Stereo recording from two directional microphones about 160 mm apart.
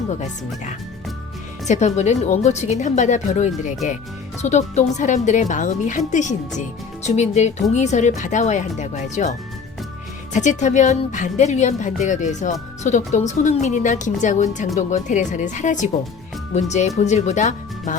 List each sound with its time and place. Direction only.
1.6 s speech: 45° left (ahead or behind)
10.3 s speech: 50° left (ahead or behind)